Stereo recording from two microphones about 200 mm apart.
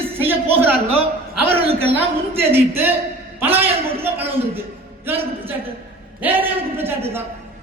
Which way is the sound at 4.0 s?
30° right (ahead or behind).